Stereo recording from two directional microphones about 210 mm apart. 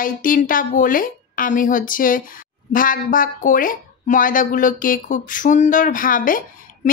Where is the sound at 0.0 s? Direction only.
40° left (ahead or behind).